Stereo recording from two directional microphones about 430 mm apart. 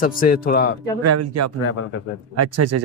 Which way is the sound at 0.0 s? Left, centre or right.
Centre.